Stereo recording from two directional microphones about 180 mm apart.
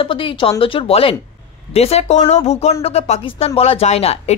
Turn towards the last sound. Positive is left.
turn(degrees=35)  # may be behind; listen again after turning